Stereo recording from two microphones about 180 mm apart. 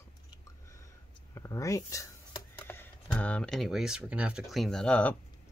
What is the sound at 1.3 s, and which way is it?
Speech, 15° left (ahead or behind).